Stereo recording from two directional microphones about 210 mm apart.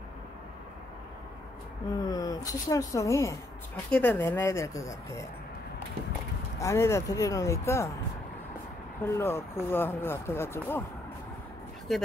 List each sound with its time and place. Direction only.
2.0 s speech: 20° left (ahead or behind)
6.6 s speech: 15° left (ahead or behind)
9.0 s speech: 10° left (ahead or behind)
11.9 s speech: centre (ahead or behind)